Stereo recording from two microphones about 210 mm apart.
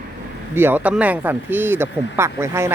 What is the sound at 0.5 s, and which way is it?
Speech, 10° right (ahead or behind).